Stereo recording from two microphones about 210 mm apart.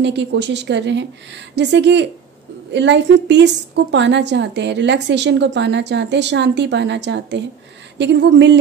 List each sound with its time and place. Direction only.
0.0 s a woman's voice: 55° right (ahead or behind)